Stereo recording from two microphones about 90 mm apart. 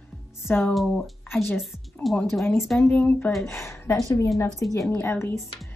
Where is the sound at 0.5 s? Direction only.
25° left (ahead or behind).